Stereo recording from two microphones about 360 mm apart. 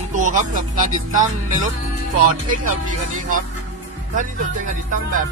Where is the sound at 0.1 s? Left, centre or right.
Right.